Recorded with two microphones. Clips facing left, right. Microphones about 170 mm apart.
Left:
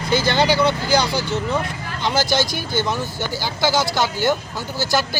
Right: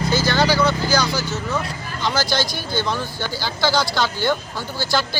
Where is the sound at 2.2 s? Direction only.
50° left (ahead or behind).